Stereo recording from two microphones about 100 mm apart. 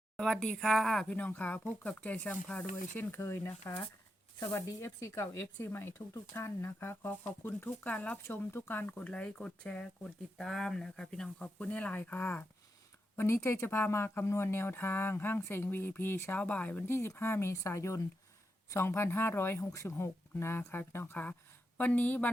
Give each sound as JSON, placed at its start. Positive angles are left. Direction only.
{"t": 0.2, "sound": "speech", "side_deg": 5}
{"t": 1.1, "sound": "speech", "side_deg": 15}